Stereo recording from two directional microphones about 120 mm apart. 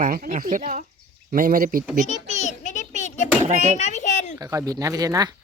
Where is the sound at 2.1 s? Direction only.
70° left (ahead or behind); by 4.4 s 90° left.